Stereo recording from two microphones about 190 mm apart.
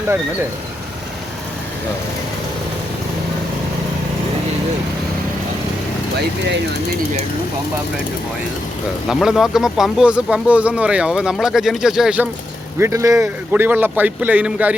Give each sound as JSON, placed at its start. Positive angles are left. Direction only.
{"t": 6.1, "sound": "speech", "side_deg": -65}
{"t": 9.0, "sound": "speech", "side_deg": 0}
{"t": 12.8, "sound": "a man's voice", "side_deg": -15}